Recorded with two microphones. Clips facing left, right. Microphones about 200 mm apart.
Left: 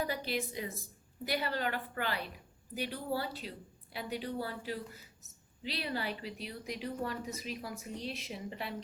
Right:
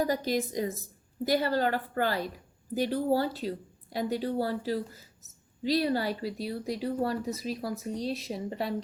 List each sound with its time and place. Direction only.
0.0 s speech: 40° right (ahead or behind)